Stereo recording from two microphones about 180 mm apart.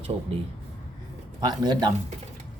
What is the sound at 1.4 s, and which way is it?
Speech, 25° right (ahead or behind).